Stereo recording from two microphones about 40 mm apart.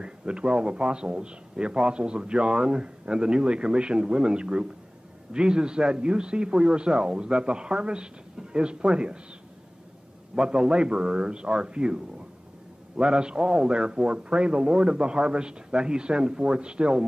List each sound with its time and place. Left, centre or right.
0.0 s a man's voice: right
10.3 s a man's voice: right